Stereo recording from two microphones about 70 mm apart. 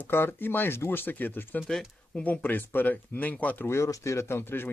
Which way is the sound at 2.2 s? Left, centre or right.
Left.